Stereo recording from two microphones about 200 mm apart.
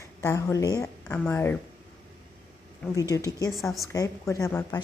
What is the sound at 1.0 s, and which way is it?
Speech, 5° left (ahead or behind).